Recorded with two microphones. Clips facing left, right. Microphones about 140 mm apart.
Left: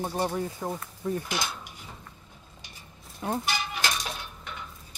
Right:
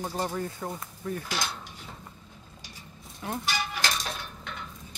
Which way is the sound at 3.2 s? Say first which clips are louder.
Left 2 dB; 25° left (ahead or behind).